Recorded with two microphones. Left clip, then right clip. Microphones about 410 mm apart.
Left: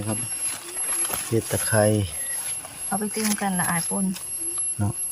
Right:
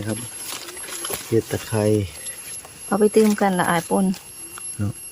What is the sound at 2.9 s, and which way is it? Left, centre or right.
Speech, centre.